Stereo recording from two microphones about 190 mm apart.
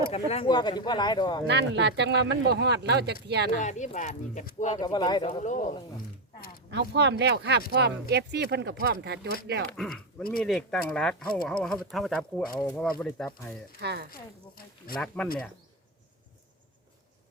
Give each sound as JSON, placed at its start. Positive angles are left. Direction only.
{"t": 0.1, "sound": "speech", "side_deg": 35}
{"t": 0.4, "sound": "speech", "side_deg": 20}
{"t": 1.5, "sound": "speech", "side_deg": -65}
{"t": 3.6, "sound": "speech", "side_deg": 40}
{"t": 4.8, "sound": "speech", "side_deg": 20}
{"t": 5.4, "sound": "speech", "side_deg": 40}
{"t": 6.7, "sound": "speech", "side_deg": -65}
{"t": 9.7, "sound": "speech", "side_deg": 0}
{"t": 13.7, "sound": "speech", "side_deg": -60}
{"t": 14.1, "sound": "a sound", "side_deg": 50}
{"t": 15.0, "sound": "speech", "side_deg": 5}